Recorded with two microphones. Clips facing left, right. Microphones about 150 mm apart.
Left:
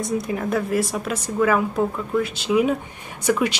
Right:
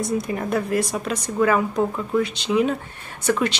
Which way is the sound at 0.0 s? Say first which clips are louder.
Even; centre (ahead or behind).